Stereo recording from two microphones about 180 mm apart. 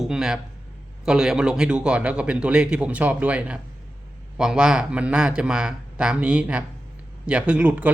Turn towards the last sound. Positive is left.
turn(degrees=-10)  # may be behind; listen again after turning